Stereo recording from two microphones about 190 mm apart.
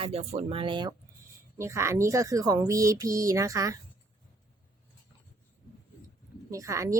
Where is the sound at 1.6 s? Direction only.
15° right (ahead or behind).